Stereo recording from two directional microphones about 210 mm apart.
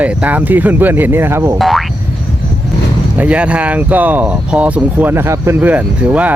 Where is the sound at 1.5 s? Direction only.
Centre (ahead or behind).